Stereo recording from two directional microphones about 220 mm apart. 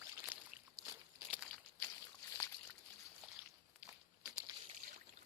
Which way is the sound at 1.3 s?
5° left (ahead or behind).